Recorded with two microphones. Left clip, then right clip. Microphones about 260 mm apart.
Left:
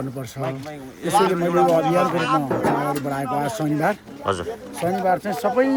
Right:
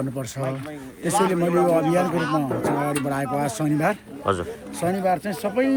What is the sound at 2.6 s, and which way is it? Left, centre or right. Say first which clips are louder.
Speech: left 3 dB; left.